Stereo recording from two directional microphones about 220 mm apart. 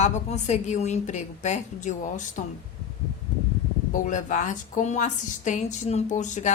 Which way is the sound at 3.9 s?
35° left (ahead or behind).